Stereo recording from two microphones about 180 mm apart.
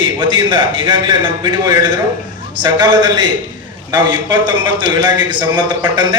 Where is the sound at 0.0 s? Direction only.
25° right (ahead or behind).